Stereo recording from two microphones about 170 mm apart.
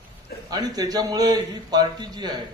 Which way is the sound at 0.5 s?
25° right (ahead or behind).